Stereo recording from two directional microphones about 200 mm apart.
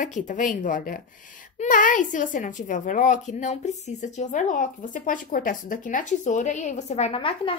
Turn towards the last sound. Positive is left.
turn(degrees=30)  # may be behind; listen again after turning